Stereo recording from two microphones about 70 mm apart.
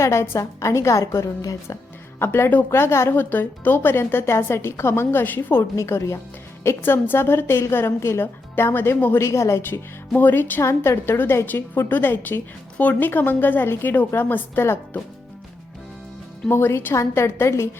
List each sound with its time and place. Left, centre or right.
0.0 s a woman's voice: left
2.1 s a woman's voice: left
5.7 s a woman's voice: left
6.7 s a woman's voice: left
9.2 s a woman's voice: left
10.2 s a woman's voice: left
10.6 s a woman's voice: left
16.5 s a woman's voice: left